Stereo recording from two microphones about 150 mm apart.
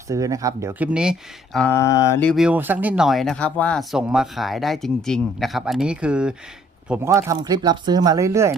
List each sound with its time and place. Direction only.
0.1 s speech: 20° right (ahead or behind); by 3.8 s 5° left (ahead or behind)
3.9 s speech: 5° right (ahead or behind)
7.1 s speech: 20° right (ahead or behind)